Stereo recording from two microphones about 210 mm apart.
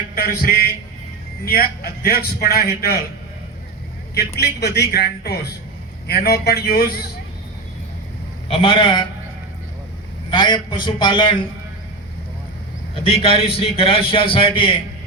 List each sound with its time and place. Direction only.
0.2 s a man's voice: 45° left (ahead or behind)
4.4 s a man's voice: 50° left (ahead or behind)
8.4 s a man's voice: 25° left (ahead or behind)
10.2 s a man's voice: 20° left (ahead or behind)
13.1 s a man's voice: 25° left (ahead or behind)